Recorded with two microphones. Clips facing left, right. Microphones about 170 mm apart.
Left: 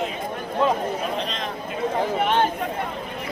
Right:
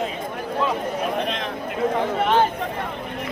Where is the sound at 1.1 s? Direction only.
60° right (ahead or behind).